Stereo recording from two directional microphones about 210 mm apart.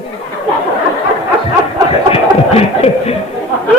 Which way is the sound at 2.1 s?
30° left (ahead or behind).